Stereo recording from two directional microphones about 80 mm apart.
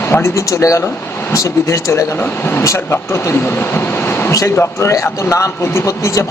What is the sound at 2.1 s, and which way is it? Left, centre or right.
A man's voice, left.